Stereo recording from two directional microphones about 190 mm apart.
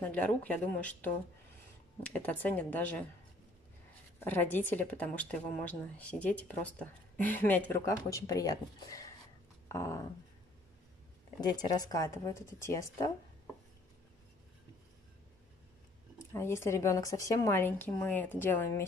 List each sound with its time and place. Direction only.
0.0 s a woman's voice: 10° left (ahead or behind)
4.2 s a woman's voice: 10° left (ahead or behind)
9.7 s a sound: 15° left (ahead or behind)
11.5 s a woman's voice: 20° left (ahead or behind)
16.2 s a woman's voice: 15° left (ahead or behind)